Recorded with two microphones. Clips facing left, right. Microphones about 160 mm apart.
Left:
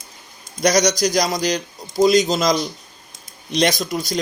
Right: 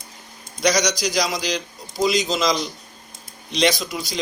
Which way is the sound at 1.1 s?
45° left (ahead or behind).